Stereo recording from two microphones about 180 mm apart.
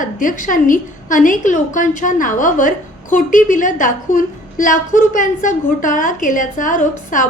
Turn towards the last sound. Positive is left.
turn(degrees=45)  # may be behind; listen again after turning